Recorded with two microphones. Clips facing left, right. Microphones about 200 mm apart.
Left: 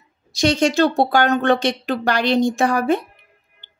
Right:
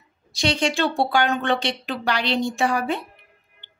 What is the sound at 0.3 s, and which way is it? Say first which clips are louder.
A woman's voice: left 6 dB; 45° left (ahead or behind).